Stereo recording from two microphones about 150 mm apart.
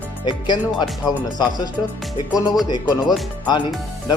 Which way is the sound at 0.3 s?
30° left (ahead or behind).